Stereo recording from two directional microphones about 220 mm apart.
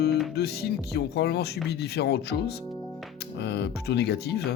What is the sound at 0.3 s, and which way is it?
Speech, 50° left (ahead or behind).